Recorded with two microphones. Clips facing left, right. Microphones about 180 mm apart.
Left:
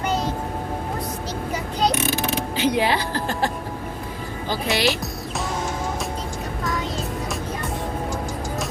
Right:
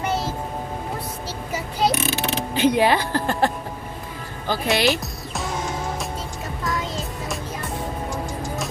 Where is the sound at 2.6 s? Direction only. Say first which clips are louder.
Right 4 dB; 50° right (ahead or behind).